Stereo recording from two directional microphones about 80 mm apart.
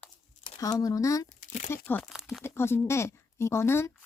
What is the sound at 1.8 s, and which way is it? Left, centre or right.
Speech, left.